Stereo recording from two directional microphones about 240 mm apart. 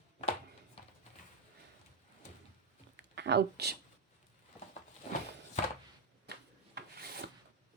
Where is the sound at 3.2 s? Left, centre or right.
Right.